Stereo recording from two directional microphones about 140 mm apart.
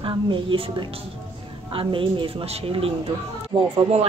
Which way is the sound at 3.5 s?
30° right (ahead or behind).